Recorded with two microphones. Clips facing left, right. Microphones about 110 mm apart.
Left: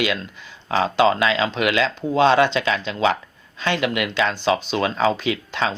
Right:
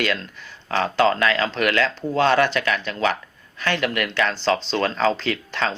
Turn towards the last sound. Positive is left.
turn(degrees=15)  # may be behind; listen again after turning